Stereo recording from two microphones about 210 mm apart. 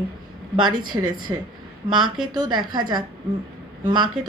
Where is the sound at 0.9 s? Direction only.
20° right (ahead or behind).